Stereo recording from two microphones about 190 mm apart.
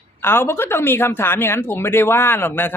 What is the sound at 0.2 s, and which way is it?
Speech, 10° left (ahead or behind).